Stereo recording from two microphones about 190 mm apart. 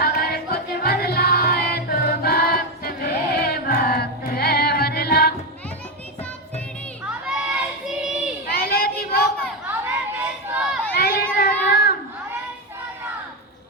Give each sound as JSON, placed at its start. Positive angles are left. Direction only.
{"t": 0.0, "sound": "music", "side_deg": 55}
{"t": 7.0, "sound": "crowd", "side_deg": -5}
{"t": 8.5, "sound": "a sound", "side_deg": 55}
{"t": 9.6, "sound": "chatter", "side_deg": -15}
{"t": 10.9, "sound": "run", "side_deg": 55}
{"t": 11.7, "sound": "a sound", "side_deg": 50}